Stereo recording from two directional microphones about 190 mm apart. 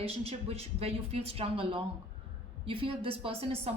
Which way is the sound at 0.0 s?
30° right (ahead or behind).